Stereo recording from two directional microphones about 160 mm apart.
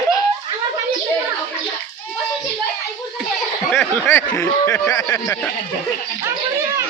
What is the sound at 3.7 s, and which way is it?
Speech, 5° left (ahead or behind).